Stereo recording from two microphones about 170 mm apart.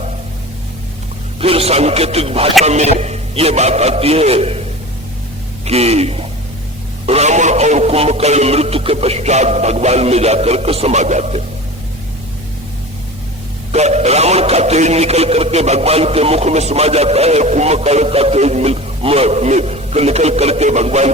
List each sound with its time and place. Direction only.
1.4 s a man's voice: 35° right (ahead or behind)
5.6 s a man's voice: 40° right (ahead or behind)
13.7 s a man's voice: 40° right (ahead or behind)